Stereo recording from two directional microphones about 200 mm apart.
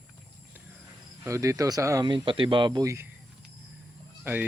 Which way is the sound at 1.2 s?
15° right (ahead or behind).